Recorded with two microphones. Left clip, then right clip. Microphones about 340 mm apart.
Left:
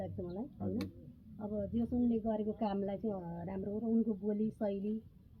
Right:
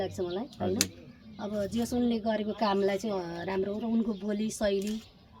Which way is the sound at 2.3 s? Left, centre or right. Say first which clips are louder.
Right 8 dB; centre.